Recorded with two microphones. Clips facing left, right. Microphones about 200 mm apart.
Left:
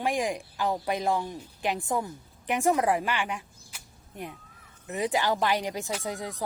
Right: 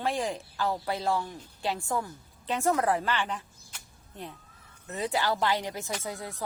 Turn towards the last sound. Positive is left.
turn(degrees=15)  # may be behind; listen again after turning